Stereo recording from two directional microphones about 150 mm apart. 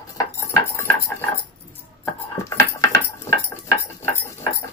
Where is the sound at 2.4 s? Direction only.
20° left (ahead or behind).